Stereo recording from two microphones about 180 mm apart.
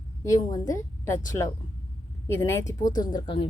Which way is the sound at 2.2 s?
15° left (ahead or behind).